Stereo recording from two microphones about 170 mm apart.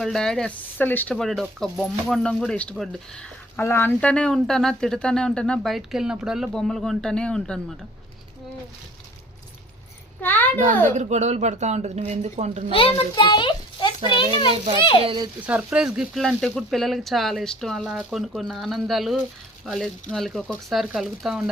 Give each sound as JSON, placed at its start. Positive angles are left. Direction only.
{"t": 0.0, "sound": "speech", "side_deg": 5}
{"t": 10.2, "sound": "a child's voice", "side_deg": 10}
{"t": 10.8, "sound": "speech", "side_deg": -45}
{"t": 12.7, "sound": "a child's voice", "side_deg": 30}
{"t": 14.5, "sound": "speech", "side_deg": -35}
{"t": 15.4, "sound": "speech", "side_deg": -10}